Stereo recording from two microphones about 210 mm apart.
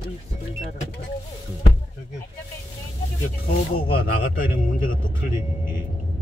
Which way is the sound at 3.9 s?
40° left (ahead or behind).